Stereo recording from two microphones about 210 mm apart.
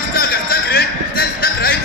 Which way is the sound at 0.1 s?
45° left (ahead or behind).